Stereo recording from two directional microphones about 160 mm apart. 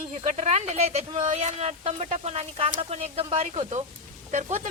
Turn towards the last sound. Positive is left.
turn(degrees=-50)  # may be behind; listen again after turning